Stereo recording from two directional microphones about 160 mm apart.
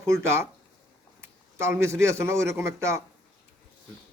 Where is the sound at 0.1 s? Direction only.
15° right (ahead or behind).